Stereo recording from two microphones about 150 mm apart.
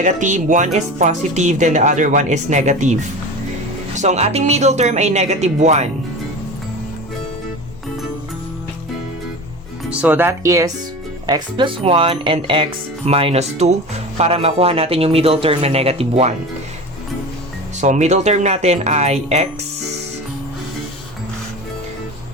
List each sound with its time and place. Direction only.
0.0 s speech: 55° right (ahead or behind)
9.9 s speech: 10° right (ahead or behind); by 16.3 s 40° right (ahead or behind)
17.7 s speech: 50° right (ahead or behind)